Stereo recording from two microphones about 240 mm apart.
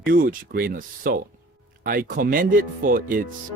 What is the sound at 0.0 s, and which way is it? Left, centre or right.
Speech, right.